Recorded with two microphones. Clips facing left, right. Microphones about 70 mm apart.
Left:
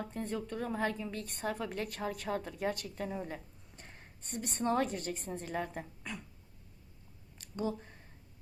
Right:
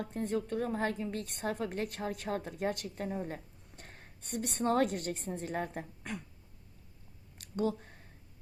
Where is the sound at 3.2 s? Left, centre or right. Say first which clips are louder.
Right 2 dB; right.